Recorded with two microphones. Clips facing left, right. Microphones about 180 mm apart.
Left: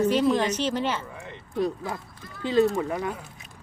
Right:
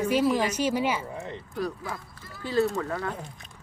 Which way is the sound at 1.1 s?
35° right (ahead or behind).